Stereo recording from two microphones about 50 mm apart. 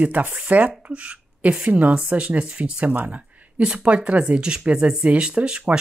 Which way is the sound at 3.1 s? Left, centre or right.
Right.